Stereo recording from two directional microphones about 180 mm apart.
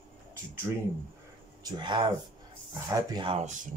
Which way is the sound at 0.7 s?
10° right (ahead or behind).